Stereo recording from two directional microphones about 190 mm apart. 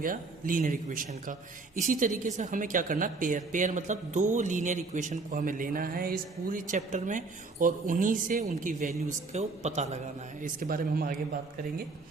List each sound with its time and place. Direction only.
0.0 s a man's voice: 45° right (ahead or behind)
10.4 s a man's voice: 50° right (ahead or behind)